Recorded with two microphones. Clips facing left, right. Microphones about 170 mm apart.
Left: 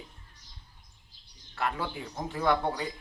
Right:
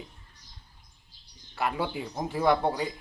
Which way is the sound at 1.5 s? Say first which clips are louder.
Right 3 dB; 15° right (ahead or behind).